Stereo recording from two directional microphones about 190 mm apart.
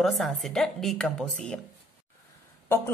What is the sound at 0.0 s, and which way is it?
A woman's voice, centre (ahead or behind).